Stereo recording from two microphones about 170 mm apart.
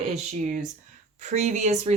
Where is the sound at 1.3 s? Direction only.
40° right (ahead or behind).